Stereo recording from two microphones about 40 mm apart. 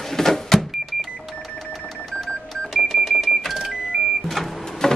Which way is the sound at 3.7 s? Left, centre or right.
Centre.